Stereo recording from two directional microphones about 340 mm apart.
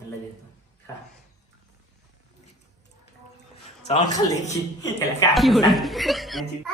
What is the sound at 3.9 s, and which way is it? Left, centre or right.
Speech, centre.